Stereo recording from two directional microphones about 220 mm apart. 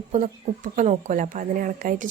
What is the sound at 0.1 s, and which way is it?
A woman's voice, 35° right (ahead or behind).